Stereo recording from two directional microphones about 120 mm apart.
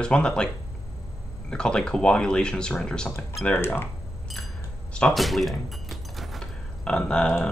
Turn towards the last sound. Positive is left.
turn(degrees=5)  # may be behind; listen again after turning